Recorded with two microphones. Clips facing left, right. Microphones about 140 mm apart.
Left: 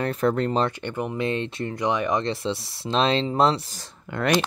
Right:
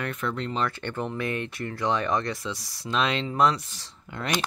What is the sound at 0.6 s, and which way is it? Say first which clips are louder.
Speech: left 3 dB; 15° left (ahead or behind).